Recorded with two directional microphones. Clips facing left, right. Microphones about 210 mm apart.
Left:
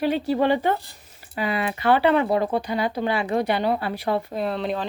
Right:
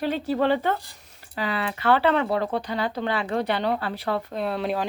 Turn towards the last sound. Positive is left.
turn(degrees=-5)  # may be behind; listen again after turning